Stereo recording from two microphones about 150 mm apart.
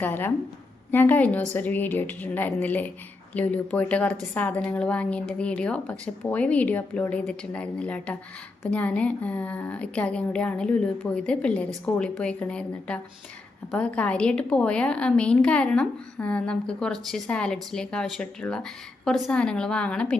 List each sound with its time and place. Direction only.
0.0 s a woman's voice: 15° left (ahead or behind)